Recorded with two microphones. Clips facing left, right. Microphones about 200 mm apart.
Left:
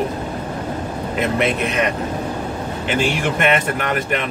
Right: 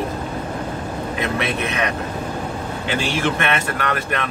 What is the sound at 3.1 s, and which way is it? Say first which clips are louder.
Speech: left 2 dB; 15° left (ahead or behind).